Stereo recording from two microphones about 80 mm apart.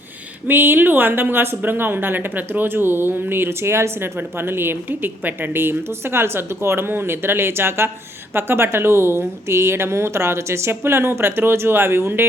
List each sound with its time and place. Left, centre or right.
0.4 s a woman's voice: right